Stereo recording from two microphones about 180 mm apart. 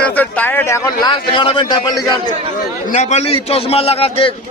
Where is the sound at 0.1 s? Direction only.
10° left (ahead or behind).